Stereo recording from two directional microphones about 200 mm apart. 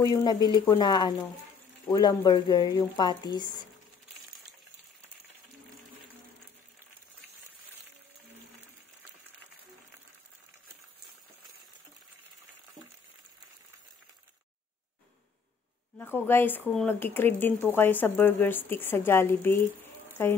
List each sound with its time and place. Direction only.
0.0 s speech: 20° left (ahead or behind)
16.0 s a woman's voice: 10° left (ahead or behind)